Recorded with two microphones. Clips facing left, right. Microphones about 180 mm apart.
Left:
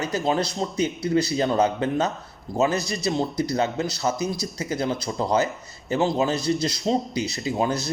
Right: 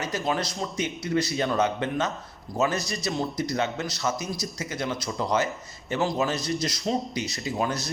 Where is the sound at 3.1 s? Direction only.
25° left (ahead or behind).